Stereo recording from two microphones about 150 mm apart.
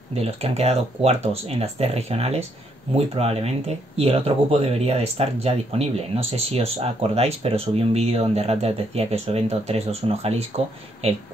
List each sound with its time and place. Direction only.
0.1 s speech: 45° right (ahead or behind)